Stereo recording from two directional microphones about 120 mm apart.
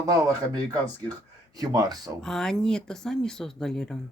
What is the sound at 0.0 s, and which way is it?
Speech, 30° right (ahead or behind).